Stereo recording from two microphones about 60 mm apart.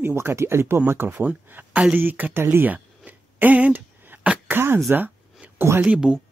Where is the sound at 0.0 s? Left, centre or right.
Right.